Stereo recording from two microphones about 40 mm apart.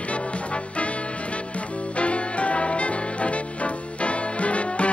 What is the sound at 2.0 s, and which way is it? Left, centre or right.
Music, left.